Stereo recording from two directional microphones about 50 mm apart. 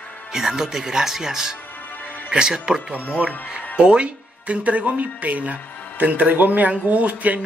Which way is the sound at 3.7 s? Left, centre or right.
Right.